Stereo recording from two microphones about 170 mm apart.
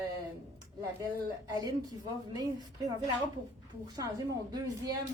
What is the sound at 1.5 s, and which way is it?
Speech, 25° right (ahead or behind).